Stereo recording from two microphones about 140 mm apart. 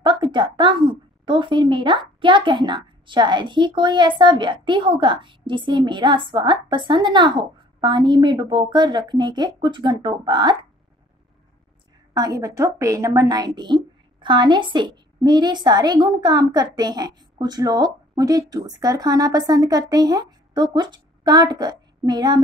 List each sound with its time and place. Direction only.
0.0 s a woman's voice: 35° right (ahead or behind)
12.1 s a woman's voice: 25° right (ahead or behind)